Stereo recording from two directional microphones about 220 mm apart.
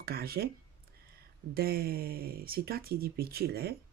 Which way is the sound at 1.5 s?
45° right (ahead or behind).